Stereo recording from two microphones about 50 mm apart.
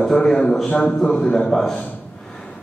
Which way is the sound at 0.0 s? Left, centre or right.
Centre.